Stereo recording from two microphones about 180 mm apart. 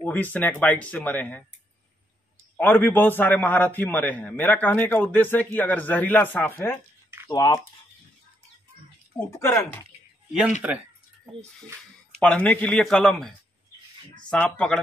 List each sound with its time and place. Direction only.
0.0 s a man's voice: 10° left (ahead or behind)
2.5 s a man's voice: 10° left (ahead or behind)
9.4 s a man's voice: 15° left (ahead or behind)
10.6 s speech: 10° right (ahead or behind)
12.2 s a man's voice: 5° left (ahead or behind)
14.3 s a man's voice: 5° left (ahead or behind)